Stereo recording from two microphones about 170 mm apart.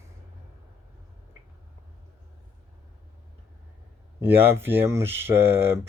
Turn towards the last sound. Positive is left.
turn(degrees=-15)  # may be behind; listen again after turning